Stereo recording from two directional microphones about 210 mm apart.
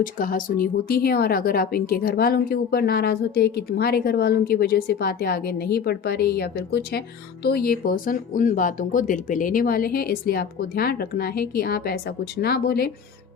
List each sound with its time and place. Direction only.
0.0 s a woman's voice: 40° left (ahead or behind)